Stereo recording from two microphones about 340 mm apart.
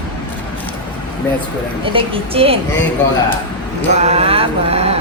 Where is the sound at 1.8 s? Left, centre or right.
Centre.